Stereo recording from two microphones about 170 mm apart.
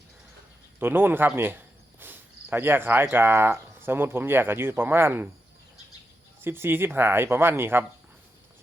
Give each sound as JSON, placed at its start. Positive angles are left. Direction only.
{"t": 0.8, "sound": "speech", "side_deg": -10}
{"t": 6.4, "sound": "speech", "side_deg": -15}